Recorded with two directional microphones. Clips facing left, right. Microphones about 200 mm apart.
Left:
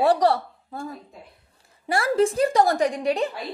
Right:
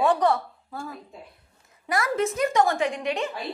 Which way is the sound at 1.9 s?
30° left (ahead or behind).